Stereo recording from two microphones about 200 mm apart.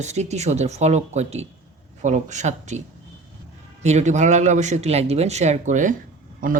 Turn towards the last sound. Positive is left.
turn(degrees=-45)  # may be behind; listen again after turning